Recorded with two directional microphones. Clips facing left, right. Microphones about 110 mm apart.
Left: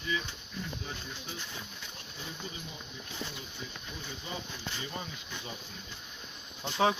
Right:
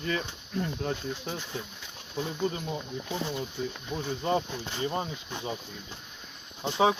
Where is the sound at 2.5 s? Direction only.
65° right (ahead or behind).